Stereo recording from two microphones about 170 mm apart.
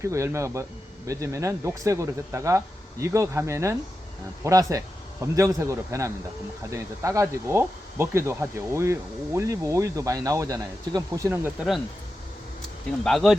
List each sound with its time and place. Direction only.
0.0 s speech: 15° right (ahead or behind)
13.1 s speech: centre (ahead or behind)